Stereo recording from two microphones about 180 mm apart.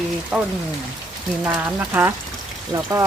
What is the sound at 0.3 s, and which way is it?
Speech, centre (ahead or behind).